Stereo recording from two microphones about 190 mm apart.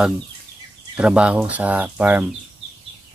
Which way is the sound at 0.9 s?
5° right (ahead or behind).